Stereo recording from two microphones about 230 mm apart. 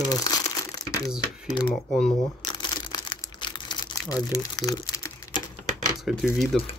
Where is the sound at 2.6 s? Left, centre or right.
Centre.